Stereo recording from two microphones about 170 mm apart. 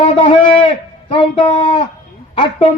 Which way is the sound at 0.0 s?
30° left (ahead or behind).